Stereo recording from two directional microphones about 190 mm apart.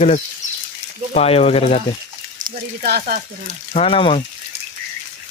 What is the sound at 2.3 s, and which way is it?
Speech, 50° right (ahead or behind).